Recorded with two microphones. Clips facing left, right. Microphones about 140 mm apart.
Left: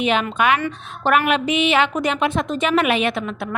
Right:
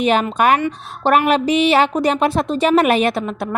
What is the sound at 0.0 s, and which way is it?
A woman's voice, 40° right (ahead or behind).